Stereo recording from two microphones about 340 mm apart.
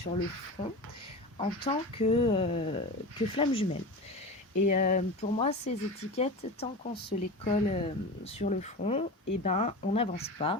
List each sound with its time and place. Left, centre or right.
0.6 s speech: centre